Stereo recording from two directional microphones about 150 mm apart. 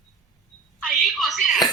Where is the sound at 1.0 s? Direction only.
Centre (ahead or behind).